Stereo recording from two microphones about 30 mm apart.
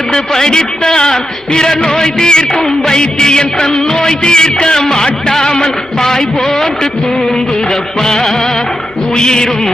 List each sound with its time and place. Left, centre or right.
0.1 s a man's voice: left
8.0 s a man's voice: centre